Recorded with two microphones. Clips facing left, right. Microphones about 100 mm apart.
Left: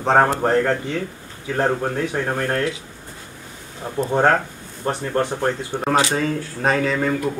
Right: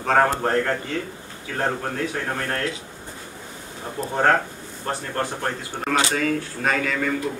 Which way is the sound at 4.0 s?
20° left (ahead or behind).